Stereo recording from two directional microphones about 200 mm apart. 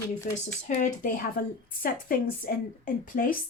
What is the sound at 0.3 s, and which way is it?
Speech, 40° left (ahead or behind).